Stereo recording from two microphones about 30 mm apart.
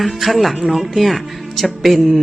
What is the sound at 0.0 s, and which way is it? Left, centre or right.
Speech, centre.